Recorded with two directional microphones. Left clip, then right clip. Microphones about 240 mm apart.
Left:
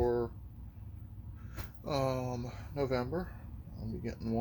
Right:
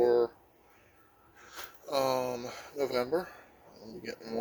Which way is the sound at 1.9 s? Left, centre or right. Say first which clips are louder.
Right 5 dB; right.